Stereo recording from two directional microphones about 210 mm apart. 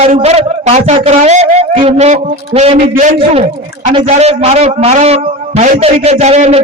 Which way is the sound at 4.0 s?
30° right (ahead or behind).